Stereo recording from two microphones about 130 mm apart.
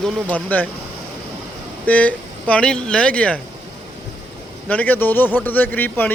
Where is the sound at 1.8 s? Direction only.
10° left (ahead or behind).